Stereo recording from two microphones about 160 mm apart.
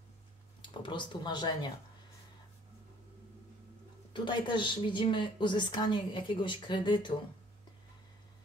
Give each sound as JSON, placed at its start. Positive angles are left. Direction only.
{"t": 0.6, "sound": "speech", "side_deg": 30}
{"t": 4.1, "sound": "speech", "side_deg": 30}